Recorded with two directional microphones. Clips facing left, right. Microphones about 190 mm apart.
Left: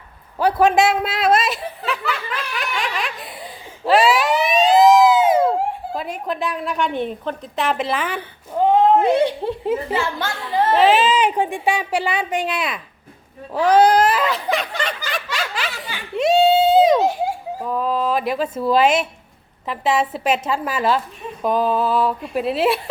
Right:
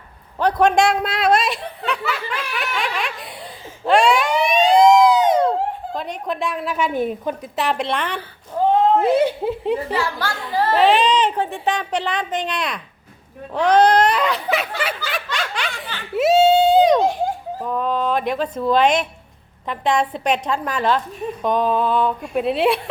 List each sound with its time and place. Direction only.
0.3 s a man's voice: 5° left (ahead or behind)
3.8 s police car: centre (ahead or behind)
9.0 s a woman's voice: 5° right (ahead or behind)
9.9 s a woman's voice: 25° left (ahead or behind)
10.5 s children playing: 20° left (ahead or behind)
10.8 s a woman's voice: centre (ahead or behind)
14.8 s snicker: 5° right (ahead or behind)
16.1 s a sound: centre (ahead or behind)
19.6 s a woman's voice: 5° left (ahead or behind)